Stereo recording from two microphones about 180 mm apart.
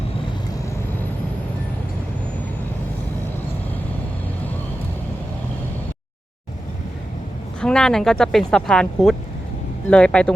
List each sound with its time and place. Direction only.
7.6 s speech: 5° left (ahead or behind)